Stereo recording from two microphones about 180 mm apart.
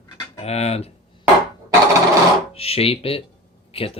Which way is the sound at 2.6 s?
35° left (ahead or behind).